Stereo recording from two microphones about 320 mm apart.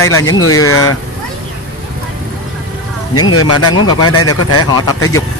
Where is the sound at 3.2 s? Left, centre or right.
Left.